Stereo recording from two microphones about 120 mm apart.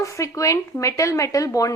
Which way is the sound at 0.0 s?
25° left (ahead or behind).